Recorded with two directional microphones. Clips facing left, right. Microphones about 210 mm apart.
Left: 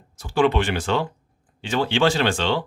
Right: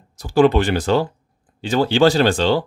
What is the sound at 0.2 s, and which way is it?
Speech, 40° right (ahead or behind).